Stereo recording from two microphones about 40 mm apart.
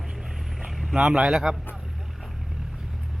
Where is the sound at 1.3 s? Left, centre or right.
Centre.